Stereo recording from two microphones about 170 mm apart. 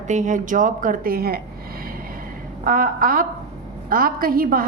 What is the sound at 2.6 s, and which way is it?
A woman's voice, 55° right (ahead or behind).